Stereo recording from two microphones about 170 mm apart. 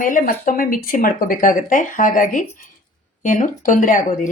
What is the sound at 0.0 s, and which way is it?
Speech, 55° left (ahead or behind).